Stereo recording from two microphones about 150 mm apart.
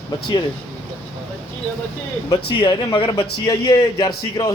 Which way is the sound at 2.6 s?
35° left (ahead or behind).